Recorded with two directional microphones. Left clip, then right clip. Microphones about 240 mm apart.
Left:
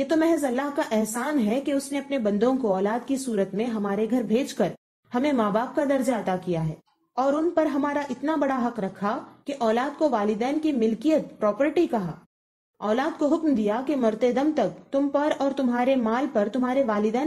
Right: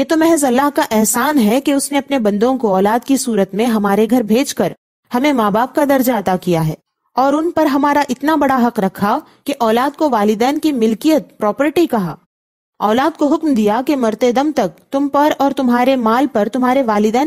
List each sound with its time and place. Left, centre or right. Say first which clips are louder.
0.0 s a woman's voice: right 10 dB; right